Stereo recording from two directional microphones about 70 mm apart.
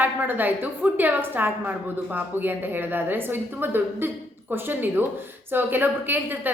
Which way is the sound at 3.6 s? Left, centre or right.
Right.